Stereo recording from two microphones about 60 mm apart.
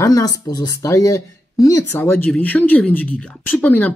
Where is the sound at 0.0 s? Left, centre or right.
Left.